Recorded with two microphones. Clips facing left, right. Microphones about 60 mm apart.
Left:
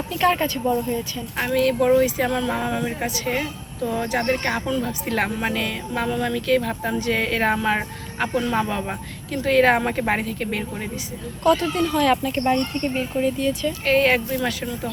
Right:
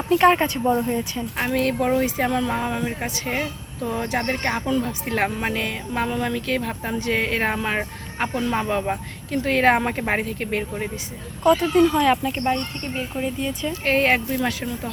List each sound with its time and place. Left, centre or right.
0.1 s speech: right
2.2 s speech: centre
4.3 s speech: centre
7.5 s speech: centre
11.4 s speech: centre
11.7 s speech: right
12.0 s speech: centre
13.7 s speech: right